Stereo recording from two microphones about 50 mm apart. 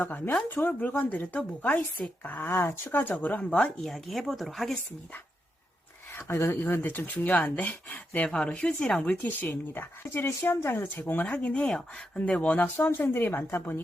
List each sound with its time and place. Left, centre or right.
0.0 s speech: left
3.8 s speech: centre
6.2 s speech: left
8.4 s speech: centre; by 11.0 s left
11.3 s speech: left